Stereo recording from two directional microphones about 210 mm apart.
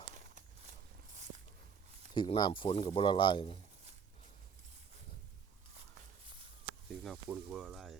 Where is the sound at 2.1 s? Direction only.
20° left (ahead or behind).